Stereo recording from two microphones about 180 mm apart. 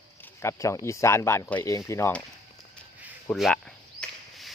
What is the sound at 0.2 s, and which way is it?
Speech, 10° left (ahead or behind).